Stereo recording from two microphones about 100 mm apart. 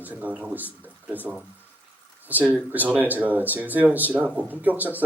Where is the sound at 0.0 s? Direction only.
15° right (ahead or behind).